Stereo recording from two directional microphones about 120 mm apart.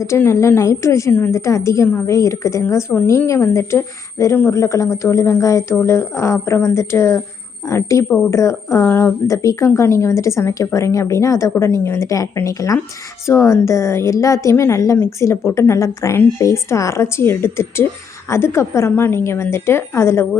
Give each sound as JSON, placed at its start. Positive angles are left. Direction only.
{"t": 0.0, "sound": "a woman's voice", "side_deg": 20}